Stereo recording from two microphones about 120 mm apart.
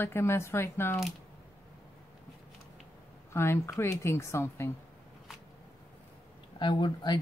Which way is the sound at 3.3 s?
20° left (ahead or behind).